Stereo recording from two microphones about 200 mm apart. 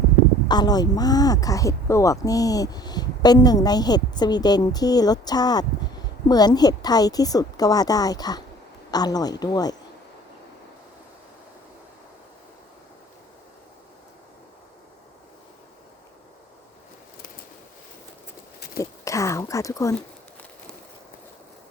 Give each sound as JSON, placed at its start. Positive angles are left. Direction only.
{"t": 0.4, "sound": "a woman's voice", "side_deg": 20}
{"t": 18.8, "sound": "speech", "side_deg": 15}